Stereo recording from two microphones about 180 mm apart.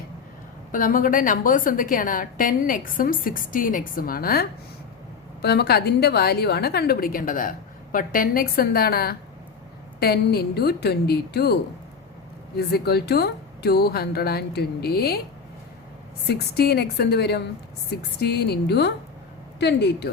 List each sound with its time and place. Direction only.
0.7 s a woman's voice: 50° left (ahead or behind)
16.3 s speech: 65° left (ahead or behind)